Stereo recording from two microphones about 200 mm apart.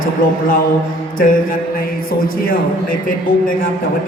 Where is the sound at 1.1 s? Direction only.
45° left (ahead or behind).